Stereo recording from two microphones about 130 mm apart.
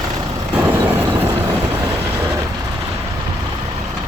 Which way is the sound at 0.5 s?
15° right (ahead or behind).